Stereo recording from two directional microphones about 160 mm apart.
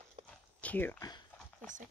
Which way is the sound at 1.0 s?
25° left (ahead or behind).